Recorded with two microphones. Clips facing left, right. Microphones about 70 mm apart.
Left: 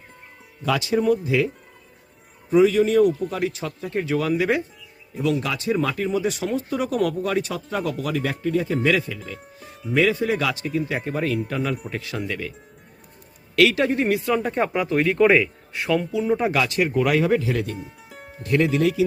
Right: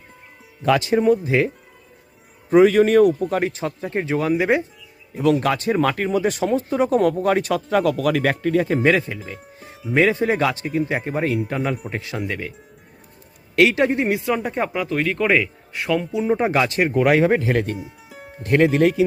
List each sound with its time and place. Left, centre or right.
0.6 s speech: right
2.5 s speech: right
3.5 s speech: right
5.2 s speech: right
8.9 s speech: right
11.5 s speech: centre
11.9 s speech: right
13.6 s speech: right; by 16.0 s centre
16.1 s speech: right
17.3 s speech: right
17.7 s music: centre
18.4 s speech: right